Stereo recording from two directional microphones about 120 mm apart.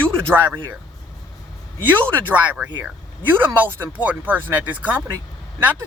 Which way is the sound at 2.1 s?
15° right (ahead or behind).